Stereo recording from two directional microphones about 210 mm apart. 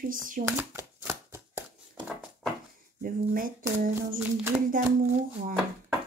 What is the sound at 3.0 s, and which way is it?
Speech, 40° right (ahead or behind).